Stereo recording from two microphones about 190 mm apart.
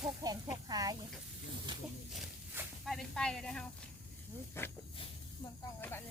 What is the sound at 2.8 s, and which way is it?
A woman's voice, centre (ahead or behind).